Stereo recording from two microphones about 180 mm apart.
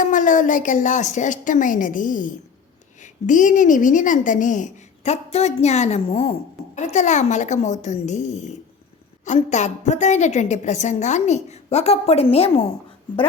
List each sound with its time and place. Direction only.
0.0 s a woman's voice: 45° left (ahead or behind)